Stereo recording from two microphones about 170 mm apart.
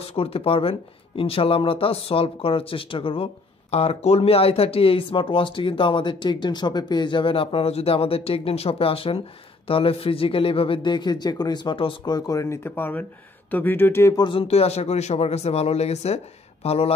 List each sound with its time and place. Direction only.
0.0 s speech: 35° left (ahead or behind)